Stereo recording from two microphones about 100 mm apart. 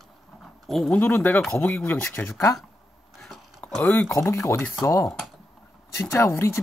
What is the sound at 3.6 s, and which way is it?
Speech, 15° left (ahead or behind).